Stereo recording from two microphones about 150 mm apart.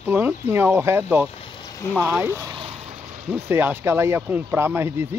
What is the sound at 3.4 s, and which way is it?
Speech, 15° right (ahead or behind).